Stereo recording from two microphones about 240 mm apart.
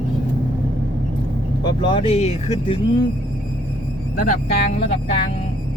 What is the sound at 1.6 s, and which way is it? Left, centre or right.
Speech, centre.